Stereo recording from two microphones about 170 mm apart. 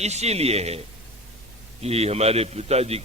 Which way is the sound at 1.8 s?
40° right (ahead or behind).